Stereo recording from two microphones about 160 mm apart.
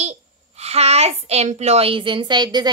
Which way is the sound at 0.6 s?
40° right (ahead or behind).